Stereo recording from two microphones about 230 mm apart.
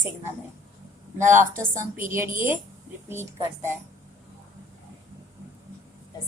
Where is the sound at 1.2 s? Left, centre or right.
Right.